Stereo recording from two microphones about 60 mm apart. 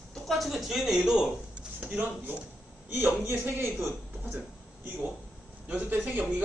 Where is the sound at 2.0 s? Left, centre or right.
Right.